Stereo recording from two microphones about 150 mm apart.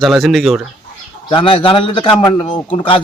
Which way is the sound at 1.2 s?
35° left (ahead or behind).